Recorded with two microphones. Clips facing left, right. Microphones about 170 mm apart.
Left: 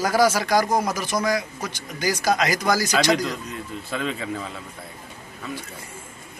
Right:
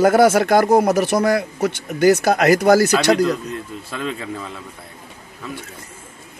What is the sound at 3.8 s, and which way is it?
Speech, centre (ahead or behind).